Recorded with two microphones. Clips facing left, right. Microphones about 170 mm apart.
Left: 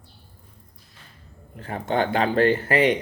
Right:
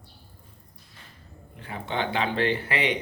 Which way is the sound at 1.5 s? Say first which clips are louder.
Left 6 dB; 45° left (ahead or behind).